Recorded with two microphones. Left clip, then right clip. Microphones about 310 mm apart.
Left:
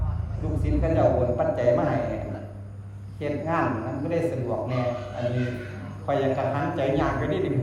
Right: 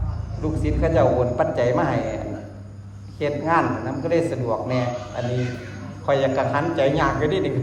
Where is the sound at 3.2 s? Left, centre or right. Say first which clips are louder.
Right 6 dB; right.